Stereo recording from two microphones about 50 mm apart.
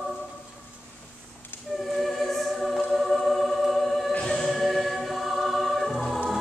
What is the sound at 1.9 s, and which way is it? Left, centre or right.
Music, centre.